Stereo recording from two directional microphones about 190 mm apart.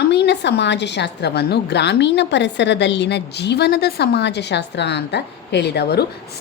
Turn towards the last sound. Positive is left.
turn(degrees=60)  # may be behind; listen again after turning